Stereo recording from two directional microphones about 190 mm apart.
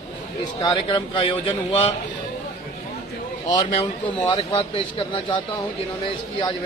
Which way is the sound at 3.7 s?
30° left (ahead or behind).